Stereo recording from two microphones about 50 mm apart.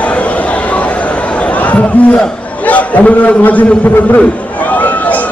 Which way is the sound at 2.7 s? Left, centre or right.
Left.